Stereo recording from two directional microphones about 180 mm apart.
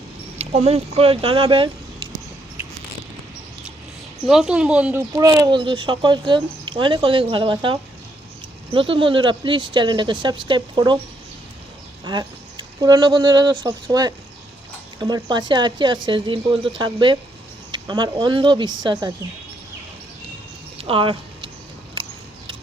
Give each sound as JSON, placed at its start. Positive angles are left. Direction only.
{"t": 0.3, "sound": "speech", "side_deg": -35}
{"t": 4.3, "sound": "speech", "side_deg": -5}
{"t": 12.0, "sound": "speech", "side_deg": -25}
{"t": 20.7, "sound": "a sound", "side_deg": -30}